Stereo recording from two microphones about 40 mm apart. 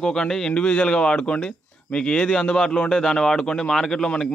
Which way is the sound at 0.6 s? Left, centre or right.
Left.